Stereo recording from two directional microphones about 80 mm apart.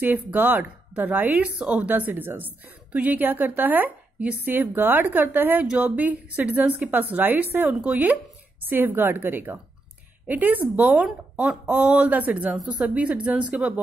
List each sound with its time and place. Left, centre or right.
0.0 s a woman's voice: right